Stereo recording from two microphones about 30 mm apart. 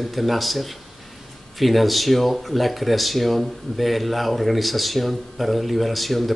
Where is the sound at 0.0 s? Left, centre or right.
Centre.